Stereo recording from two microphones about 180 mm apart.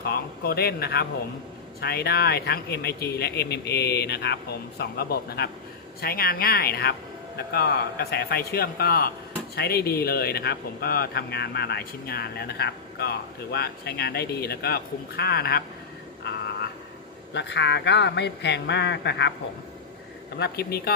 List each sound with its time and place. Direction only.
0.0 s speech: 60° left (ahead or behind)
17.3 s a man's voice: 75° left (ahead or behind)
20.4 s speech: 60° left (ahead or behind)